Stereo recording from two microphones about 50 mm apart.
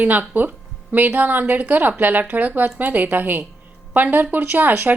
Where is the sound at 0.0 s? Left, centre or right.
Right.